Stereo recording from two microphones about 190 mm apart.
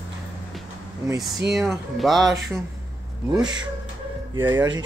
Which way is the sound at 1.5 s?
Centre (ahead or behind).